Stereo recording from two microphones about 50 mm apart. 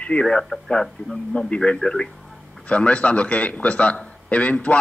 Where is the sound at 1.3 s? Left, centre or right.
Left.